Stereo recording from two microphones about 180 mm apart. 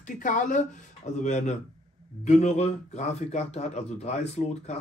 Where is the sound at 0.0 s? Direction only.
45° left (ahead or behind).